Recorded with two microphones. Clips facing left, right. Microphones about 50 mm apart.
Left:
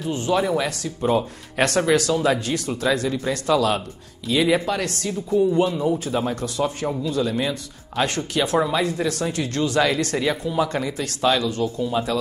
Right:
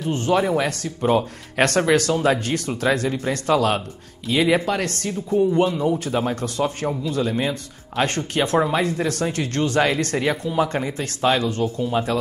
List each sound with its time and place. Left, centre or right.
0.0 s speech: right
8.6 s speech: right
10.7 s speech: right